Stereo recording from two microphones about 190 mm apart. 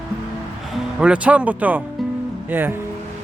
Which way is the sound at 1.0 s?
5° right (ahead or behind).